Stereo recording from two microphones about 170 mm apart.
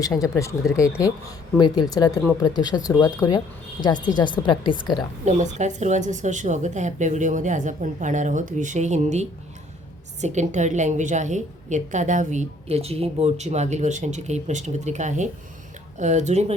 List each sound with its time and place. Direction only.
0.0 s speech: 20° left (ahead or behind)
0.8 s speech: 5° right (ahead or behind)
1.5 s speech: 25° left (ahead or behind)
5.2 s a woman's voice: 45° right (ahead or behind)